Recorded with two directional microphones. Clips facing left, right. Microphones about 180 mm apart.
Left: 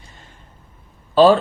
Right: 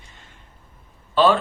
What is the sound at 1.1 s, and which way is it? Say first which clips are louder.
Speech: left 5 dB; 35° left (ahead or behind).